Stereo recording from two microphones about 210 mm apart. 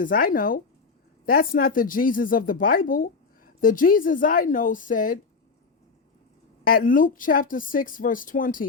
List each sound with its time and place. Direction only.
0.0 s speech: 40° left (ahead or behind)
6.7 s speech: 40° left (ahead or behind)